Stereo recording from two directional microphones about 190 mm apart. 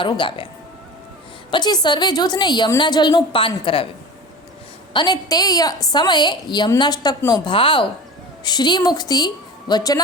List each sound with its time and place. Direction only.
0.0 s a woman's voice: 25° left (ahead or behind)
1.5 s a woman's voice: 25° left (ahead or behind)
4.9 s a woman's voice: 20° left (ahead or behind)